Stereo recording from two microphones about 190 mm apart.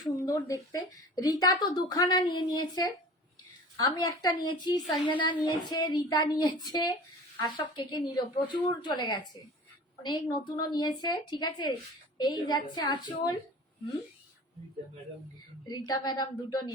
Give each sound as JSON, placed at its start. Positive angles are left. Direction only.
{"t": 0.0, "sound": "a woman's voice", "side_deg": 20}
{"t": 15.6, "sound": "a woman's voice", "side_deg": 20}